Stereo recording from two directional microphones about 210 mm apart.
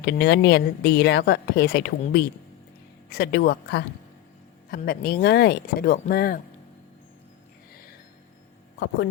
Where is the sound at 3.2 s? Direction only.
50° left (ahead or behind).